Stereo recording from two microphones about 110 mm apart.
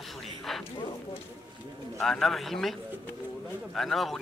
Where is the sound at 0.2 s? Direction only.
Centre (ahead or behind).